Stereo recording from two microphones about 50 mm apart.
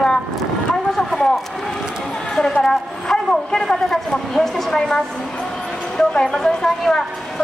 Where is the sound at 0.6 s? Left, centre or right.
Centre.